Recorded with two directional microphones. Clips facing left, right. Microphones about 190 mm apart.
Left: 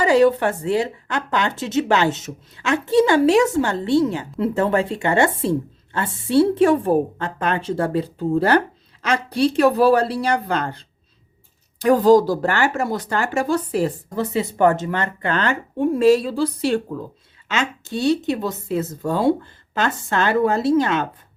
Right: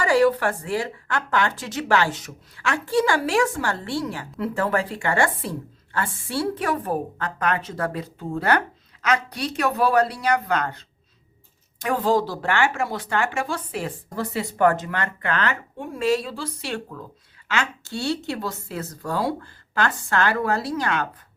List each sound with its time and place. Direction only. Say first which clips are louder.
0.0 s a woman's voice: left 4 dB; 20° left (ahead or behind); by 13.9 s 40° left (ahead or behind)
14.2 s a woman's voice: left 3 dB; 25° left (ahead or behind)
17.5 s a woman's voice: left 3 dB; 20° left (ahead or behind)